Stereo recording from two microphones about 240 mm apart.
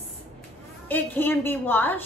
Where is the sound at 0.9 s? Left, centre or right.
Centre.